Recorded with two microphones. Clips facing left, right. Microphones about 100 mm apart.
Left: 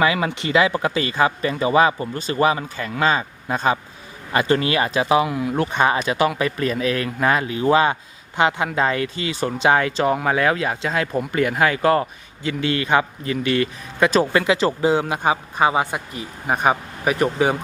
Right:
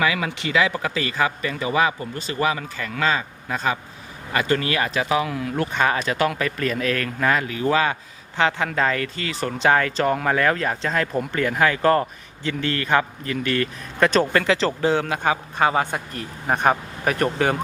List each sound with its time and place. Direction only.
0.0 s speech: 30° left (ahead or behind)
5.2 s a man's voice: 10° left (ahead or behind)